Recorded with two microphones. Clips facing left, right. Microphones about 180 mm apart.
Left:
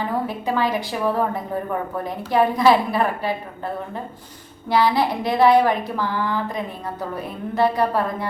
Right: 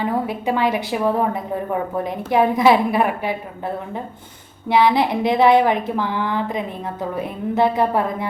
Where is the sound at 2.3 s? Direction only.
20° right (ahead or behind).